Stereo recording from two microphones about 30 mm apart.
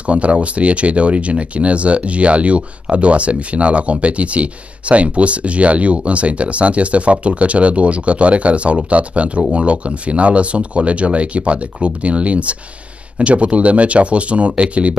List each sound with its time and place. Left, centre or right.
0.0 s speech: right